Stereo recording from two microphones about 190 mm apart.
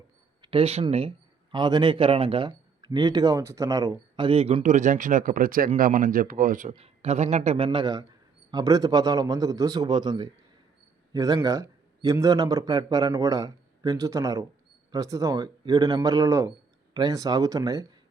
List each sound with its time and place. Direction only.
0.4 s a man's voice: 30° right (ahead or behind)
4.3 s a man's voice: 30° right (ahead or behind)